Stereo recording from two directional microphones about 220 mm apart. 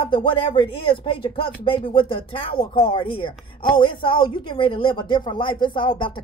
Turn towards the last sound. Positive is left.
turn(degrees=20)  # may be behind; listen again after turning